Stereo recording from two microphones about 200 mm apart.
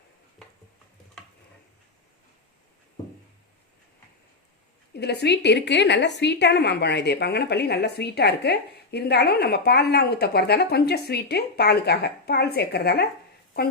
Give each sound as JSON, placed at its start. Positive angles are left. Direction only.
{"t": 4.9, "sound": "a woman's voice", "side_deg": 55}